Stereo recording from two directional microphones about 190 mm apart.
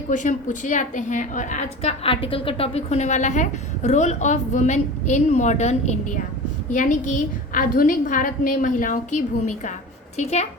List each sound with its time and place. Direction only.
0.1 s a woman's voice: 40° left (ahead or behind)